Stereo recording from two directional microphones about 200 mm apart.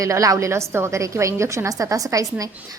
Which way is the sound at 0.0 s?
15° right (ahead or behind).